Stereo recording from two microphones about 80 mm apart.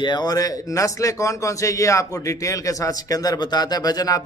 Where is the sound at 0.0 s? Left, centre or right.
Left.